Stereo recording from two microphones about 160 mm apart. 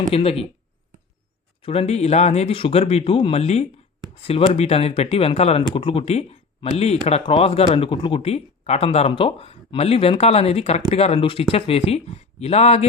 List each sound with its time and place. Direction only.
0.1 s speech: 35° left (ahead or behind)
1.6 s speech: 35° left (ahead or behind)